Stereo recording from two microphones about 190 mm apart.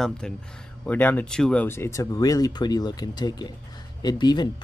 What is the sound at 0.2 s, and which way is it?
Speech, 5° left (ahead or behind).